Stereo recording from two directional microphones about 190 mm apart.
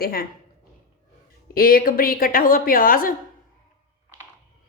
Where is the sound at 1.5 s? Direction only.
50° left (ahead or behind).